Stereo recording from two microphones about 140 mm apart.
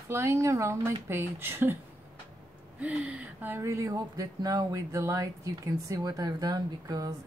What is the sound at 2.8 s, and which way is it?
Speech, 10° right (ahead or behind).